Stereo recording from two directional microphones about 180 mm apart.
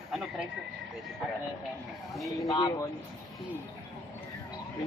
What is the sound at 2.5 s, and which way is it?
Speech, 20° left (ahead or behind).